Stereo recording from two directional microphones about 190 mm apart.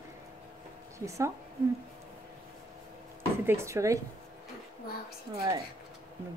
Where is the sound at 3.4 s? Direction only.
15° right (ahead or behind).